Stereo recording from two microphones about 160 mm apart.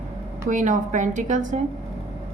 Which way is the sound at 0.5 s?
50° right (ahead or behind).